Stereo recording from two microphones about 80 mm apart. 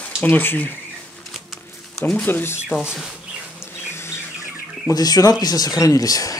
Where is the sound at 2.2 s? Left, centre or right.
Left.